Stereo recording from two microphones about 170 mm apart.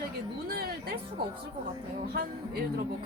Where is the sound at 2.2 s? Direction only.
60° right (ahead or behind).